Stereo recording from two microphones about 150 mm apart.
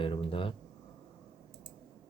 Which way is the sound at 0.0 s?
35° left (ahead or behind).